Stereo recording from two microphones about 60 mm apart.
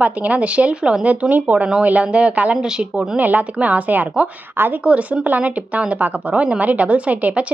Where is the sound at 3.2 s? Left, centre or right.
Right.